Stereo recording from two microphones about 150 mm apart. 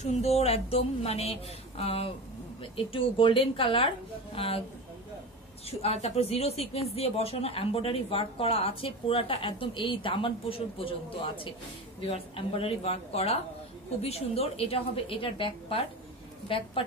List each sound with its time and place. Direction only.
0.0 s a woman's voice: 45° left (ahead or behind)
5.7 s a woman's voice: 40° left (ahead or behind)